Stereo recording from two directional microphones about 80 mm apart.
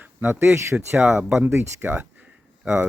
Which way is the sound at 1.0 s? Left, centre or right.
Centre.